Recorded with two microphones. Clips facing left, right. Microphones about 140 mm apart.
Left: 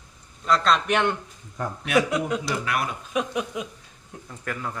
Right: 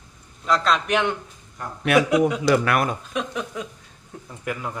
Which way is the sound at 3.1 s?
10° left (ahead or behind).